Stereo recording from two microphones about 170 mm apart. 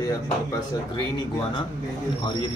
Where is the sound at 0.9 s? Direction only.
30° left (ahead or behind).